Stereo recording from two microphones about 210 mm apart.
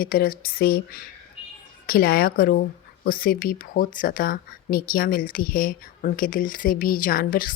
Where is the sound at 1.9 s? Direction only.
45° left (ahead or behind).